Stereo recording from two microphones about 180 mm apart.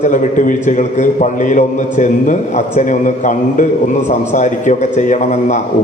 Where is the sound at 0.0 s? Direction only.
45° left (ahead or behind).